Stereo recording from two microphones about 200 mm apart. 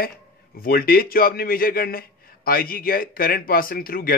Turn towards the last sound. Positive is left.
turn(degrees=45)  # may be behind; listen again after turning